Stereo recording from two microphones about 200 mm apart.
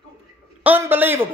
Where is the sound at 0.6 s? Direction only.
10° right (ahead or behind).